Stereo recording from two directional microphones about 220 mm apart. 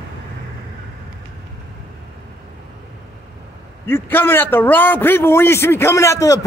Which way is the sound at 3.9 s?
10° left (ahead or behind).